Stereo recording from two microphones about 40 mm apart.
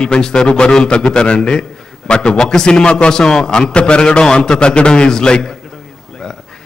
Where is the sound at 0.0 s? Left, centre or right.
Centre.